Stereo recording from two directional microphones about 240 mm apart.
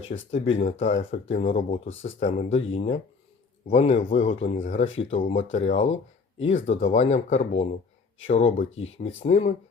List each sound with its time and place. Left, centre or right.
0.1 s speech: left
1.9 s speech: left
2.1 s speech: left
8.7 s speech: left
9.2 s speech: left